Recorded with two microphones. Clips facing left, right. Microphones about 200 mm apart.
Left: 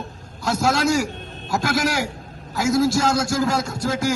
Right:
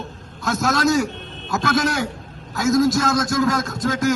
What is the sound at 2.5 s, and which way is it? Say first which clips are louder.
A man's voice: right 2 dB; 30° left (ahead or behind).